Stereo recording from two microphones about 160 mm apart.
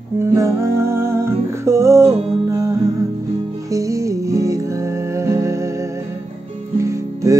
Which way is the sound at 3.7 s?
20° right (ahead or behind).